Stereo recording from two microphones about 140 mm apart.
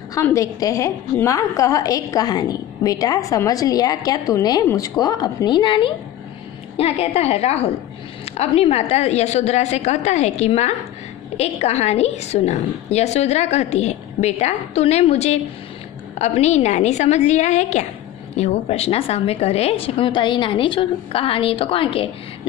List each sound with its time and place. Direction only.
0.1 s a woman's voice: 20° left (ahead or behind); by 22.1 s 40° left (ahead or behind)